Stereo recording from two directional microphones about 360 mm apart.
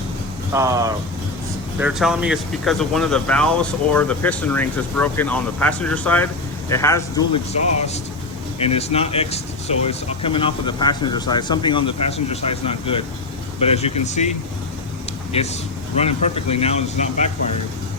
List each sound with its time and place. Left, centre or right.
0.5 s speech: centre
15.3 s speech: centre